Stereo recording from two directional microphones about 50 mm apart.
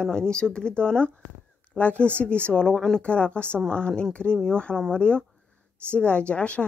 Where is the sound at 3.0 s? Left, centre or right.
Left.